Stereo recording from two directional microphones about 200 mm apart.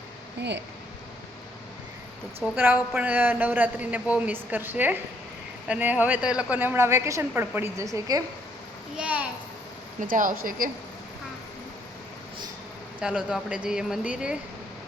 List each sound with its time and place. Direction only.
2.4 s a man's voice: 5° right (ahead or behind)
9.0 s a man's voice: 5° right (ahead or behind)
10.0 s speech: 40° right (ahead or behind)
13.0 s speech: 5° right (ahead or behind)